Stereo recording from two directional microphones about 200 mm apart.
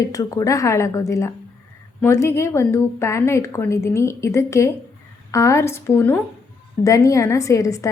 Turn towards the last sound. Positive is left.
turn(degrees=15)  # may be behind; listen again after turning